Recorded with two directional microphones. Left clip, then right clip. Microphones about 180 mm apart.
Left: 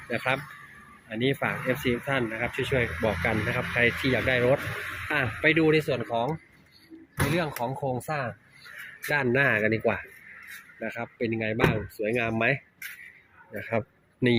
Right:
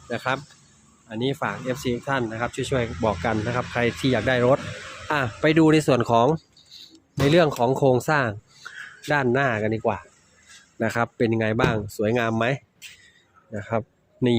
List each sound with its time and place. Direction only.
1.0 s speech: 20° right (ahead or behind); by 6.3 s 50° right (ahead or behind)
7.3 s speech: 55° right (ahead or behind)
9.0 s speech: 25° right (ahead or behind)
10.8 s a man's voice: 40° right (ahead or behind); by 14.3 s 20° right (ahead or behind)